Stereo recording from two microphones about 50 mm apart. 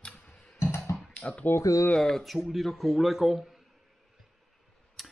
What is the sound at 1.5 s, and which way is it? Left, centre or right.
Speech, left.